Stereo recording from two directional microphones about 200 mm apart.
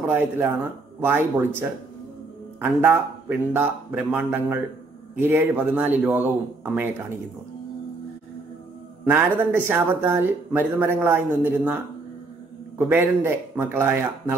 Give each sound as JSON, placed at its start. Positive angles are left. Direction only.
{"t": 0.1, "sound": "a man's voice", "side_deg": -10}
{"t": 2.6, "sound": "a man's voice", "side_deg": -10}
{"t": 9.0, "sound": "a man's voice", "side_deg": -10}